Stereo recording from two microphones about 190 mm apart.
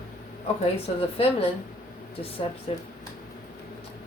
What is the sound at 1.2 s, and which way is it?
Speech, 30° left (ahead or behind).